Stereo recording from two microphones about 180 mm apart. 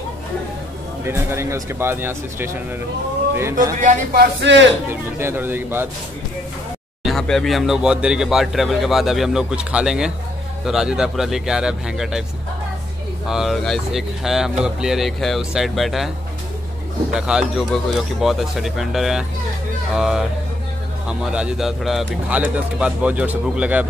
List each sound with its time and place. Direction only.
1.0 s speech: 15° right (ahead or behind)
3.8 s speech: 50° right (ahead or behind); by 4.6 s 80° right
4.8 s speech: 10° right (ahead or behind)
7.0 s speech: centre (ahead or behind)
13.3 s speech: centre (ahead or behind)
17.1 s speech: 5° right (ahead or behind)